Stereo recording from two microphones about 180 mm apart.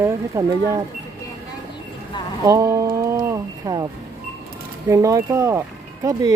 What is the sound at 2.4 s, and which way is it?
Speech, 20° right (ahead or behind).